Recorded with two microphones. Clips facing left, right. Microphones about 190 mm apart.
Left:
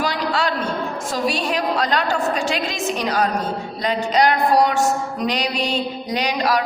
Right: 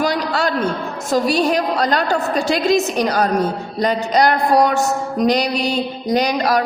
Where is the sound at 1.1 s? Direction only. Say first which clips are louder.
Right 7 dB; 40° right (ahead or behind).